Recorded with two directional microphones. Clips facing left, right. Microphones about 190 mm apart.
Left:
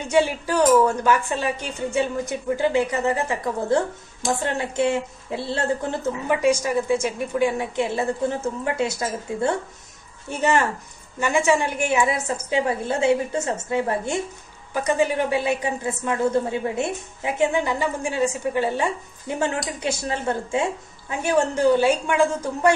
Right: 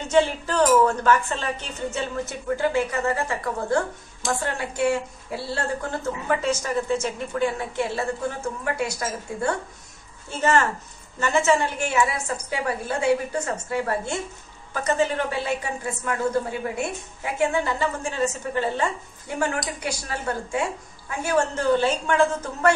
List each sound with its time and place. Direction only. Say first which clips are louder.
0.1 s a woman's voice: left 1 dB; 10° left (ahead or behind)